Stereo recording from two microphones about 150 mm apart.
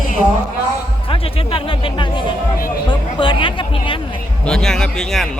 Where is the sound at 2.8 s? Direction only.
35° left (ahead or behind).